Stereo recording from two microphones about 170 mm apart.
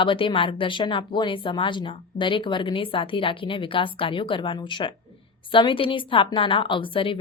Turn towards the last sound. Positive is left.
turn(degrees=30)  # may be behind; listen again after turning